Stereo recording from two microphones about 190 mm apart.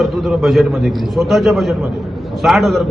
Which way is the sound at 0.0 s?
Centre (ahead or behind).